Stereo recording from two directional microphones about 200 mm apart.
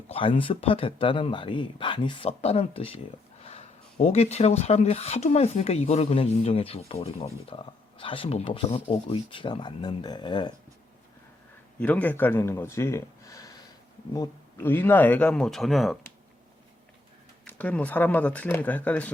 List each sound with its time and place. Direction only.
0.1 s speech: 25° left (ahead or behind)
11.8 s a man's voice: 5° left (ahead or behind)
17.4 s a man's voice: 5° left (ahead or behind)